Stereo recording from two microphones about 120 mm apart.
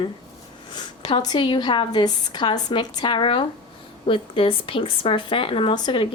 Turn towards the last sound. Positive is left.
turn(degrees=40)  # may be behind; listen again after turning